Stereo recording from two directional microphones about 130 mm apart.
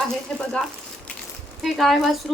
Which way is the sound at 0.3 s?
5° left (ahead or behind).